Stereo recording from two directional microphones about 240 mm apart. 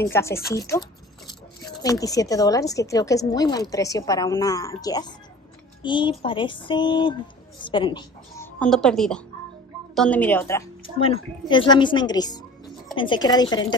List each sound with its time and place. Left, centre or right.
0.0 s a woman's voice: centre
0.6 s a sound: centre
1.8 s a woman's voice: centre
8.5 s a woman's voice: centre
11.0 s a woman's voice: left